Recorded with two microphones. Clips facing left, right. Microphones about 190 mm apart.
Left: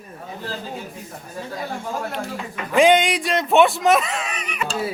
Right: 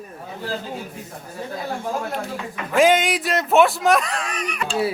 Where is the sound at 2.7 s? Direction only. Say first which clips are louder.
Left 1 dB; centre (ahead or behind).